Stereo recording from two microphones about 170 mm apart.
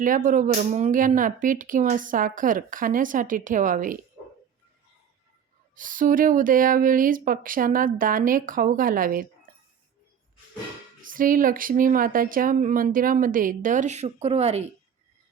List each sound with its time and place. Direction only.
0.0 s speech: 50° right (ahead or behind)
5.7 s speech: 50° right (ahead or behind)
11.0 s speech: 55° right (ahead or behind); by 14.6 s 35° right (ahead or behind)